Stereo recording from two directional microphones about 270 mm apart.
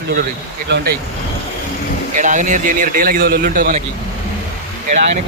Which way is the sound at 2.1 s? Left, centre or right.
Right.